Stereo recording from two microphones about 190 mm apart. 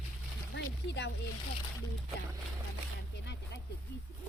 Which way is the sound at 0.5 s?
65° left (ahead or behind).